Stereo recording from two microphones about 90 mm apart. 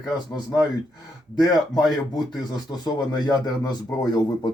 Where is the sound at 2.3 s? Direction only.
50° left (ahead or behind).